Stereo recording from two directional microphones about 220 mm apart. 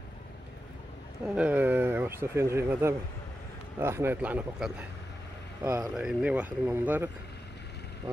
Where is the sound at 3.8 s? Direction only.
10° right (ahead or behind).